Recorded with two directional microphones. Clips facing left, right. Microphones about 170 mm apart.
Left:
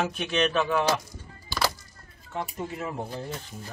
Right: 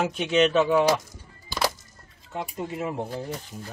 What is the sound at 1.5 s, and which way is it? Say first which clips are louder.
Music: right 1 dB; 15° right (ahead or behind).